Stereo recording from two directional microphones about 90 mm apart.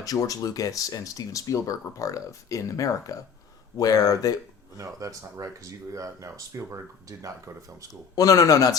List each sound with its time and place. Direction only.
0.0 s speech: 40° left (ahead or behind)
4.8 s speech: 35° right (ahead or behind)
8.1 s speech: 40° left (ahead or behind)